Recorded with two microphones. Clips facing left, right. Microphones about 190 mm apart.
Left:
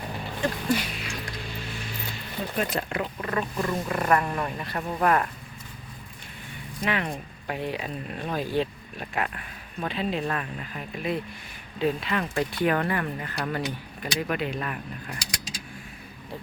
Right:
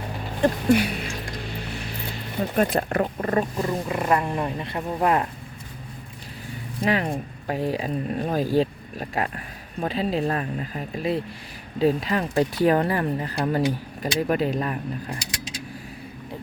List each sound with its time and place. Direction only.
0.4 s speech: 60° right (ahead or behind)
2.6 s speech: 50° right (ahead or behind)
3.7 s speech: 20° right (ahead or behind)
6.8 s speech: 35° right (ahead or behind)